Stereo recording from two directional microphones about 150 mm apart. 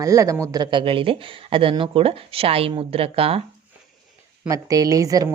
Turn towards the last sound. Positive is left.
turn(degrees=-25)  # may be behind; listen again after turning